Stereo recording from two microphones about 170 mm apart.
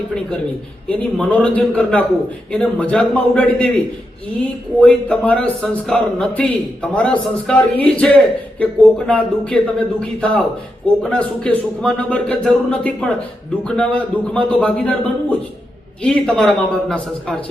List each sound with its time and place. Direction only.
0.9 s a man's voice: 5° left (ahead or behind)
4.8 s a man's voice: 10° left (ahead or behind)